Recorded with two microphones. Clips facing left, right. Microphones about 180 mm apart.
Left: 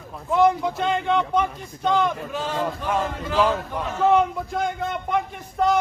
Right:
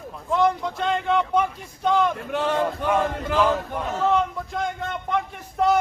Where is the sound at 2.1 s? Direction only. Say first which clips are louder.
Right 3 dB; 65° right (ahead or behind).